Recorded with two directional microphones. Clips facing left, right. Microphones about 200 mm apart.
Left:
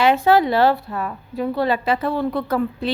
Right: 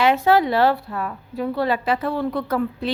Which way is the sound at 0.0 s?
30° left (ahead or behind).